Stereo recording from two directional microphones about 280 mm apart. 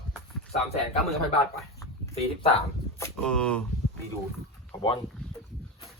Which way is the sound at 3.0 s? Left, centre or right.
Centre.